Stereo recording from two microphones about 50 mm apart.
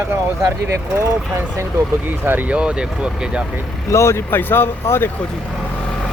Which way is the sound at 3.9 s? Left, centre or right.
Left.